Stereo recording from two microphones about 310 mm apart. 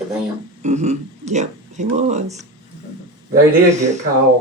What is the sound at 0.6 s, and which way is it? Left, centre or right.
Speech, right.